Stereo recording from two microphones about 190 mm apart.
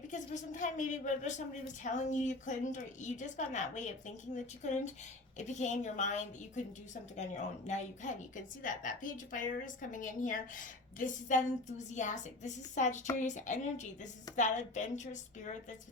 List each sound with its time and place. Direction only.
0.1 s a woman's voice: 40° left (ahead or behind)